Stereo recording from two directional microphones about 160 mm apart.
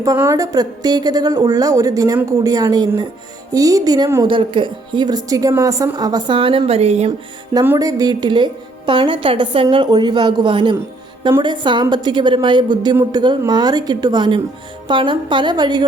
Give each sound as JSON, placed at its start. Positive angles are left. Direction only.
{"t": 0.0, "sound": "a woman's voice", "side_deg": -20}
{"t": 7.6, "sound": "a woman's voice", "side_deg": -15}